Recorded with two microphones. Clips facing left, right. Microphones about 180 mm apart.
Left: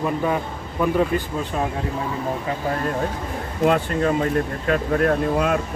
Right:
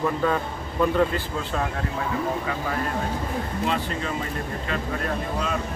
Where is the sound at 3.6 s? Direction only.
50° left (ahead or behind).